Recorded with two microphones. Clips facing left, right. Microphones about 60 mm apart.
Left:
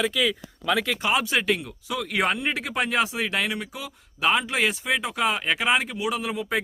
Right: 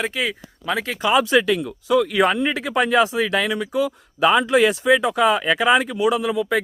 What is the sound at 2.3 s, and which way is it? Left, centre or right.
Speech, right.